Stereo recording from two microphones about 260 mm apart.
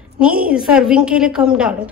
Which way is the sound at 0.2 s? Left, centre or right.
Centre.